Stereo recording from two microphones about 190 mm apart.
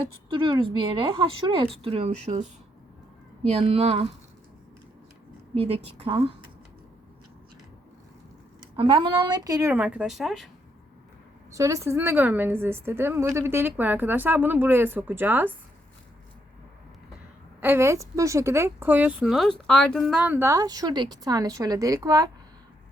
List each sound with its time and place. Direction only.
0.3 s a woman's voice: 25° right (ahead or behind)
3.5 s a woman's voice: 35° right (ahead or behind)
5.5 s a woman's voice: 30° right (ahead or behind)
8.7 s speech: 25° right (ahead or behind); by 10.5 s centre (ahead or behind)
11.5 s speech: 15° right (ahead or behind)
17.6 s speech: 15° right (ahead or behind)